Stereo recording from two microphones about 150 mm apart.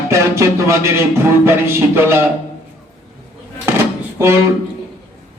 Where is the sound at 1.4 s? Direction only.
15° right (ahead or behind).